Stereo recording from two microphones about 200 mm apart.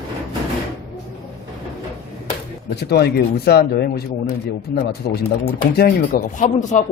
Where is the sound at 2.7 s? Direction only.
55° left (ahead or behind).